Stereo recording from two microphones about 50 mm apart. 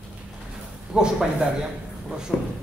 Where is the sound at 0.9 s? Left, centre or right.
Centre.